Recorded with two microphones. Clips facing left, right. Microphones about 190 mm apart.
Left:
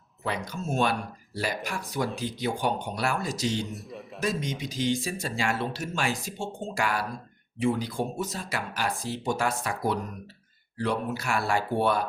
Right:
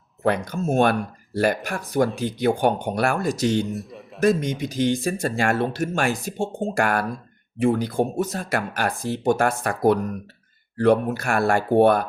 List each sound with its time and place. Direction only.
0.2 s speech: 55° right (ahead or behind)
3.7 s a man's voice: centre (ahead or behind)
4.2 s speech: 55° right (ahead or behind)